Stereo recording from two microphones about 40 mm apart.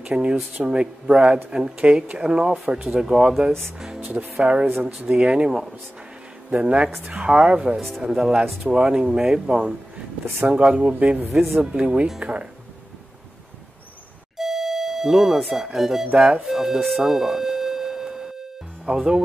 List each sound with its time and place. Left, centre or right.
0.0 s speech: right
4.4 s speech: right
5.5 s speech: centre
6.5 s speech: right
8.0 s speech: centre
10.4 s speech: right
14.3 s music: centre
16.3 s speech: centre